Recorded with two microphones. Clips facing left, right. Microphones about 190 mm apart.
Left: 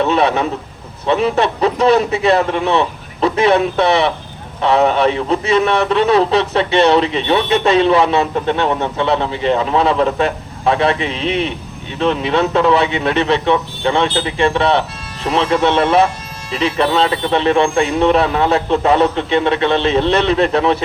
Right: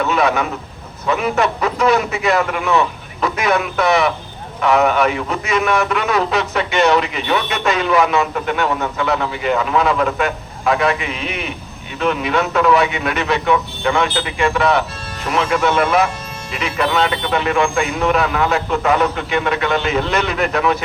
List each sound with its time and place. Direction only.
0.0 s a man's voice: 30° left (ahead or behind)